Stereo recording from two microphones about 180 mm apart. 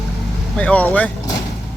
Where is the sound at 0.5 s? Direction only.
10° left (ahead or behind).